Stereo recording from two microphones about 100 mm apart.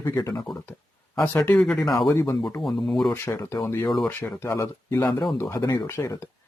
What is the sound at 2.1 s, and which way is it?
Speech, 25° left (ahead or behind).